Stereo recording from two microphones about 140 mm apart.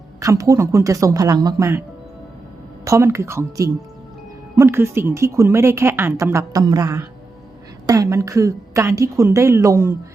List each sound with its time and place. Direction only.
0.2 s a woman's voice: 25° right (ahead or behind)
2.8 s a woman's voice: 20° right (ahead or behind)